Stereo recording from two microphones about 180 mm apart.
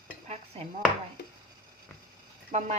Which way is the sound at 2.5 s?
45° right (ahead or behind).